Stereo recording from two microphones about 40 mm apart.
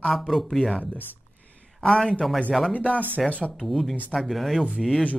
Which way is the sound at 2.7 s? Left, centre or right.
Left.